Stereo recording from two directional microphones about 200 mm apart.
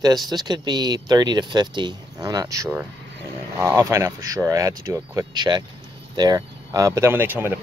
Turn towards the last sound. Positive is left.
turn(degrees=-10)  # may be behind; listen again after turning